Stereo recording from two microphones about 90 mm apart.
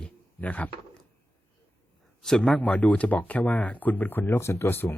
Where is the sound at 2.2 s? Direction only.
5° left (ahead or behind).